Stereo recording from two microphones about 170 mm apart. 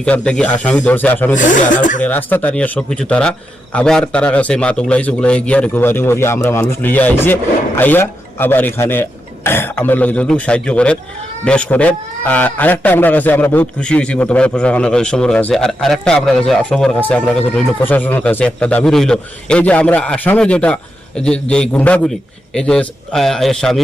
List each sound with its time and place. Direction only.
0.0 s speech: 5° left (ahead or behind)
1.4 s speech: 50° left (ahead or behind)
2.0 s a man's voice: 10° left (ahead or behind)